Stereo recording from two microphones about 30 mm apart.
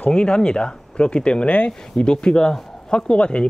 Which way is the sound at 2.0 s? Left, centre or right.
Left.